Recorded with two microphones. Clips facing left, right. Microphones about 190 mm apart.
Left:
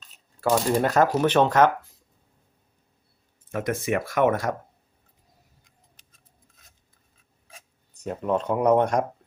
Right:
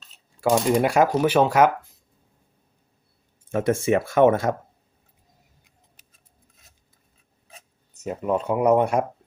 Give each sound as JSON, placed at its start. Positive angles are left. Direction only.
{"t": 0.4, "sound": "speech", "side_deg": -10}
{"t": 3.5, "sound": "speech", "side_deg": -30}
{"t": 6.0, "sound": "cutlery", "side_deg": -5}
{"t": 7.5, "sound": "speech", "side_deg": -5}